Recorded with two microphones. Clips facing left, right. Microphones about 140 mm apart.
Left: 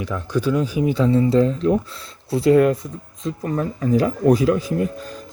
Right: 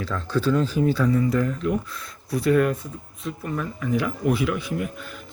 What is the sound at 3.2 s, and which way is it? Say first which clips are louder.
Speech: left 6 dB; 35° left (ahead or behind).